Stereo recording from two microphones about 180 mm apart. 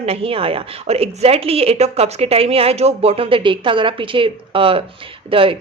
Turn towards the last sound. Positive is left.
turn(degrees=-30)  # may be behind; listen again after turning